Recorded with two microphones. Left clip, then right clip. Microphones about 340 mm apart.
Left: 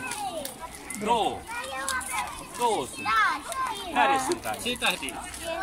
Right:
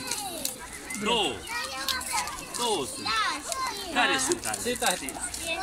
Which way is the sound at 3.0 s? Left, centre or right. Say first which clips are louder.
Left 5 dB; centre.